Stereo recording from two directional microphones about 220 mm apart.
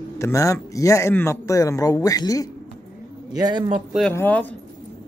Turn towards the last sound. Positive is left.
turn(degrees=10)  # may be behind; listen again after turning